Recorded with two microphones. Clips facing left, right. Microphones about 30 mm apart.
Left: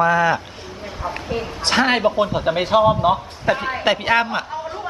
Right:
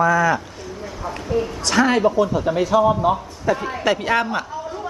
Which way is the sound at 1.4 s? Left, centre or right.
Left.